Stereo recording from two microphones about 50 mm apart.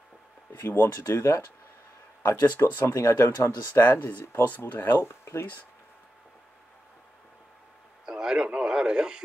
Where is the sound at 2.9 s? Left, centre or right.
Left.